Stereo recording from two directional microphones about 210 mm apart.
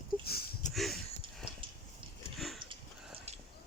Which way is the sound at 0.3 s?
45° left (ahead or behind).